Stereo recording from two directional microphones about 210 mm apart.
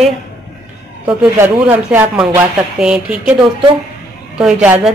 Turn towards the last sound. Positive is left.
turn(degrees=-5)  # may be behind; listen again after turning